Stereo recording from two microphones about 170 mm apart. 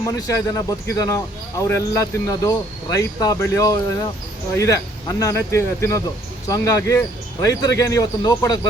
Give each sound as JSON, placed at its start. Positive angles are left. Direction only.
{"t": 0.1, "sound": "speech", "side_deg": 20}